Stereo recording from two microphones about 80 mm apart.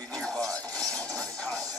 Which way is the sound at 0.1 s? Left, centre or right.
Centre.